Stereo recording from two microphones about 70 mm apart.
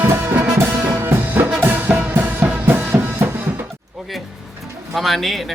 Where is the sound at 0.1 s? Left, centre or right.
Right.